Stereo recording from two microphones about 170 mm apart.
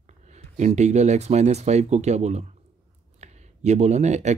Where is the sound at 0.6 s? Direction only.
40° right (ahead or behind).